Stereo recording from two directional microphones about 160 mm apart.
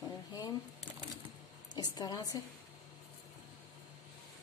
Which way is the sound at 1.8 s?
25° left (ahead or behind).